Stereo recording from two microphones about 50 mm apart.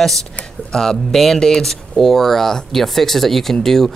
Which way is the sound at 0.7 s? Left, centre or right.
Centre.